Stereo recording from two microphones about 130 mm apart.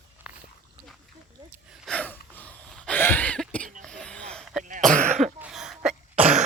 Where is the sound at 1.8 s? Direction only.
10° left (ahead or behind).